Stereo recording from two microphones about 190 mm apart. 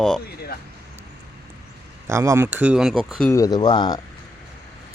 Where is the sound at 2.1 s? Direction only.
15° right (ahead or behind); by 3.3 s centre (ahead or behind).